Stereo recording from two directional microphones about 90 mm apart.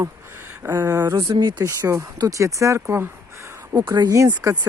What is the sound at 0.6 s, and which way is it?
Speech, 30° right (ahead or behind).